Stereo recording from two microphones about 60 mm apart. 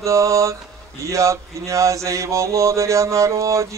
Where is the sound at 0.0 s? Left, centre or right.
Right.